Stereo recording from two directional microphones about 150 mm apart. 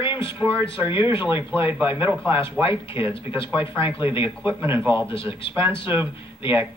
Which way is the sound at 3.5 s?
15° right (ahead or behind).